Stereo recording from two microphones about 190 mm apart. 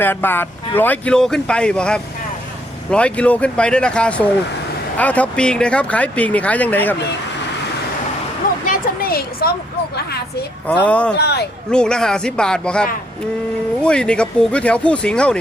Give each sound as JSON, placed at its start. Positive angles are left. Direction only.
{"t": 0.0, "sound": "speech", "side_deg": 10}
{"t": 8.6, "sound": "a sound", "side_deg": 50}
{"t": 10.7, "sound": "speech", "side_deg": 5}
{"t": 11.2, "sound": "speech", "side_deg": 60}
{"t": 11.7, "sound": "speech", "side_deg": 5}